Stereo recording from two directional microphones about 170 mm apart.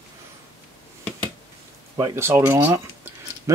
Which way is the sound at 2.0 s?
20° right (ahead or behind).